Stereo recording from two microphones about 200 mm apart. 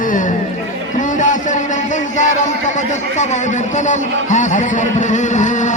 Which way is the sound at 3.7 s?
35° left (ahead or behind).